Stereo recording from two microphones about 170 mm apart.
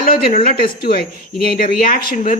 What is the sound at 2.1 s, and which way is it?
Speech, 45° left (ahead or behind).